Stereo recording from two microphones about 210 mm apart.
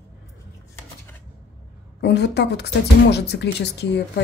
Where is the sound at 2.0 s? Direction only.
55° left (ahead or behind).